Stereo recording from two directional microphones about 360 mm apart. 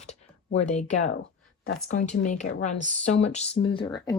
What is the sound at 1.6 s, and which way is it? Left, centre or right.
Speech, centre.